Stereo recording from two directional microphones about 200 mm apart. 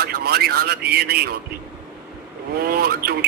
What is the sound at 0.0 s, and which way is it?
A man's voice, 50° right (ahead or behind).